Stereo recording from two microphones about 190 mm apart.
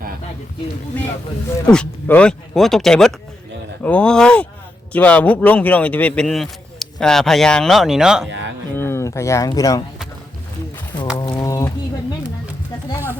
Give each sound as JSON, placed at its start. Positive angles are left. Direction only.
{"t": 1.6, "sound": "a man's voice", "side_deg": 5}
{"t": 8.3, "sound": "music", "side_deg": -70}
{"t": 8.7, "sound": "speech", "side_deg": 10}
{"t": 11.2, "sound": "a sound", "side_deg": 20}